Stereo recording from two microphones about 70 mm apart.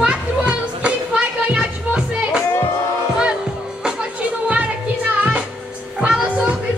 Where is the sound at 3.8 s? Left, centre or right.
Centre.